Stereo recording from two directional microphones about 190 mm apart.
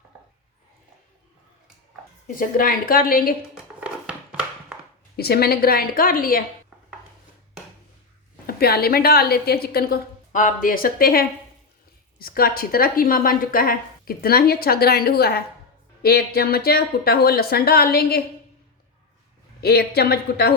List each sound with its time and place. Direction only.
2.2 s a woman's voice: 45° left (ahead or behind)
3.5 s a sound: 5° right (ahead or behind)
5.1 s a woman's voice: 55° left (ahead or behind)
8.4 s a woman's voice: 55° left (ahead or behind)
19.6 s a woman's voice: 55° left (ahead or behind)